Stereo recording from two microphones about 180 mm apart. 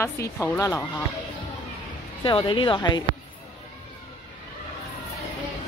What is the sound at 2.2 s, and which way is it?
Speech, 25° left (ahead or behind).